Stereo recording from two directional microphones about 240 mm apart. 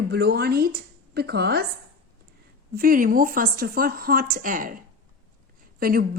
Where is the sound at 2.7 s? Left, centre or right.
Right.